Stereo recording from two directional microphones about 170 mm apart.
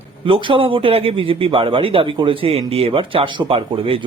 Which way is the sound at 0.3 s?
30° right (ahead or behind).